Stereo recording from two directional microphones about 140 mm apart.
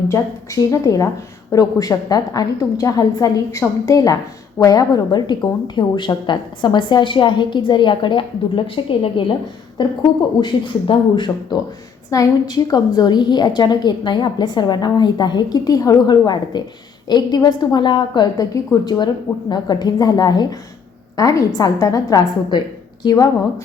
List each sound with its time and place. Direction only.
0.1 s a woman's voice: 25° left (ahead or behind)